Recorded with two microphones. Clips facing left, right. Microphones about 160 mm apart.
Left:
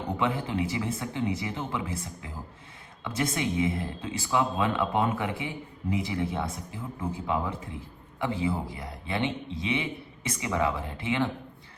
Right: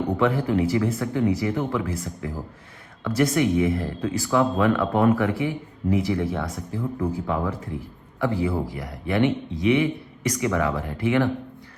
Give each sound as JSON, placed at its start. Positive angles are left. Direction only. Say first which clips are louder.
{"t": 0.2, "sound": "speech", "louder": "right 6 dB", "side_deg": 25}